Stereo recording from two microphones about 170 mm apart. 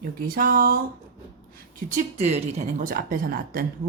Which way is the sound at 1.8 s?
45° right (ahead or behind).